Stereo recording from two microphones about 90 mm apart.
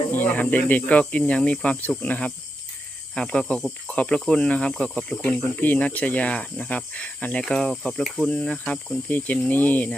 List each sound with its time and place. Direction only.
0.1 s snake: 20° left (ahead or behind)
0.5 s speech: 20° left (ahead or behind); by 8.3 s centre (ahead or behind)
8.3 s speech: 10° left (ahead or behind)